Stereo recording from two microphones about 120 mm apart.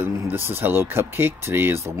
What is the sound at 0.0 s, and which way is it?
Speech, 20° right (ahead or behind).